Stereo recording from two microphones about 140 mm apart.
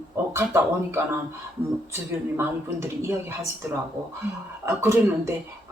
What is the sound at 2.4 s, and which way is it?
Speech, 15° right (ahead or behind).